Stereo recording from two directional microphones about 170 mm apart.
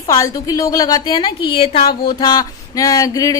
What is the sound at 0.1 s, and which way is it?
A woman's voice, 20° left (ahead or behind).